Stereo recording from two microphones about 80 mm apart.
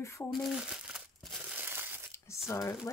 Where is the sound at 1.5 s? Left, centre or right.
Right.